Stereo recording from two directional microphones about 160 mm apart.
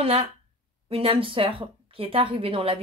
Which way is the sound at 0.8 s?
35° right (ahead or behind).